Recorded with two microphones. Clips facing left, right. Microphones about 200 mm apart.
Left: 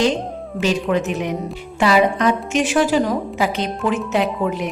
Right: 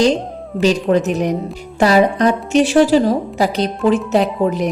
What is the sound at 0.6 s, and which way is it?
A woman's voice, 40° right (ahead or behind).